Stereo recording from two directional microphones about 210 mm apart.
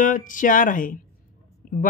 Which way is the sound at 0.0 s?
40° left (ahead or behind).